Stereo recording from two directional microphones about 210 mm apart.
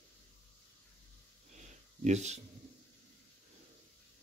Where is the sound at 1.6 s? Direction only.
35° right (ahead or behind).